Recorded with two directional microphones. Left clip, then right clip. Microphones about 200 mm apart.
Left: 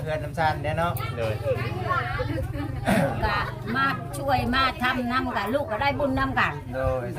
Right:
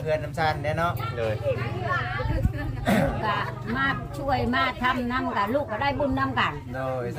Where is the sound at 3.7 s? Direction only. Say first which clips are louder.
Left 2 dB; 55° left (ahead or behind).